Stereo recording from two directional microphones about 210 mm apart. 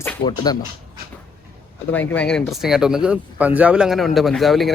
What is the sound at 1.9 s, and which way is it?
Speech, 10° left (ahead or behind).